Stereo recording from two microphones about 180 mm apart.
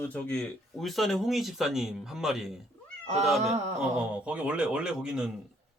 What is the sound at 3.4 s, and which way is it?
Speech, 40° right (ahead or behind).